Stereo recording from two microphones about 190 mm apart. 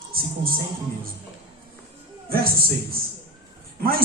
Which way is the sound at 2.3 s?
50° right (ahead or behind).